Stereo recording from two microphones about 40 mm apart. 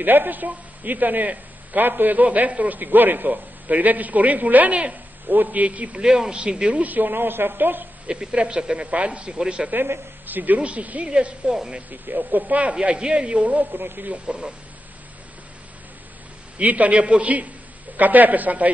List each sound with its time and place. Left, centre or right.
0.0 s a man's voice: right
1.9 s a man's voice: right
2.2 s a man's voice: right
6.0 s a man's voice: centre
6.8 s speech: right
8.1 s a man's voice: right
9.6 s speech: centre
10.2 s a man's voice: right
10.6 s speech: right
11.9 s a man's voice: right
12.8 s a man's voice: right
13.7 s speech: right
14.2 s speech: centre
16.6 s a man's voice: right